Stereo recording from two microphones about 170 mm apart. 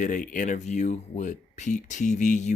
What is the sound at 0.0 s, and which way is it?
Speech, 50° left (ahead or behind).